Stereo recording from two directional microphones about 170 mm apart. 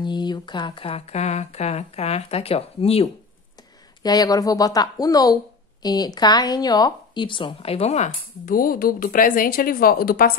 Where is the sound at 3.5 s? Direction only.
25° left (ahead or behind).